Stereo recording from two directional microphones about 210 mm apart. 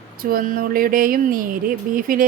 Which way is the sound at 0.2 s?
45° right (ahead or behind).